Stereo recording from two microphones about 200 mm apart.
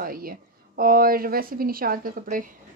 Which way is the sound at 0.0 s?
45° right (ahead or behind).